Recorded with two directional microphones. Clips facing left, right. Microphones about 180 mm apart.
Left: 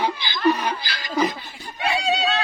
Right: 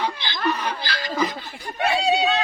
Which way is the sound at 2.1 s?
10° right (ahead or behind).